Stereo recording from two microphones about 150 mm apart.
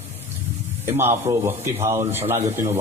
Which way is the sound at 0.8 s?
15° right (ahead or behind).